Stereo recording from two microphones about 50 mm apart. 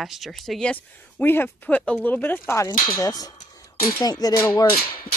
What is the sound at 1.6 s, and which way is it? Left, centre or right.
Speech, left.